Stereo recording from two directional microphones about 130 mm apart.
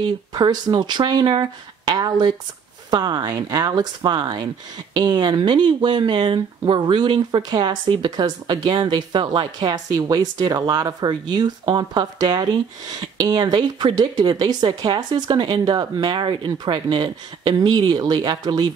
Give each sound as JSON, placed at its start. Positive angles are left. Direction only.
{"t": 0.0, "sound": "speech", "side_deg": -30}